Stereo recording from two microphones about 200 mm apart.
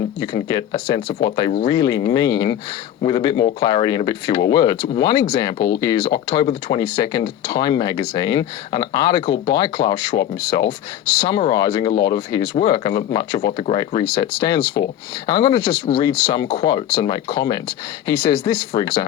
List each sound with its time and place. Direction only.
0.2 s speech: 20° left (ahead or behind)
13.5 s speech: 30° left (ahead or behind)
14.2 s speech: 20° left (ahead or behind)